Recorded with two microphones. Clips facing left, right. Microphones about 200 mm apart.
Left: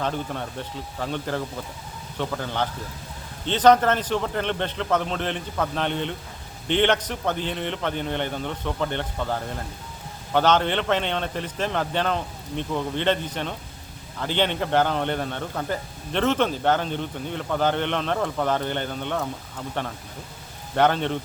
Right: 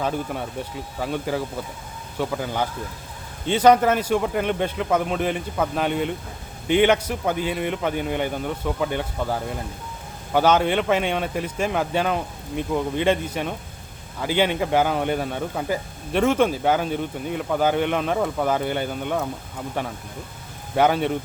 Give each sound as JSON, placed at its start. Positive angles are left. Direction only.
{"t": 0.0, "sound": "a man's voice", "side_deg": -10}